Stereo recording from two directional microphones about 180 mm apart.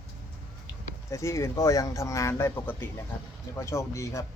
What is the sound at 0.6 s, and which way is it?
Speech, 15° left (ahead or behind).